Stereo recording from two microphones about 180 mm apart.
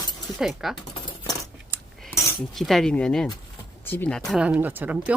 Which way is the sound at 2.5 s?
Centre (ahead or behind).